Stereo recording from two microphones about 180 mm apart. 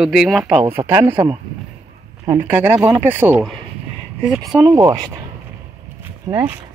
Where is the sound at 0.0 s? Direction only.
Centre (ahead or behind).